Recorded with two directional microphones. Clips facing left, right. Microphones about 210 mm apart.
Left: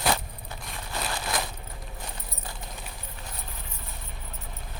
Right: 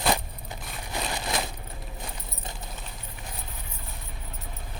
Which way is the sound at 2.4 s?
20° right (ahead or behind).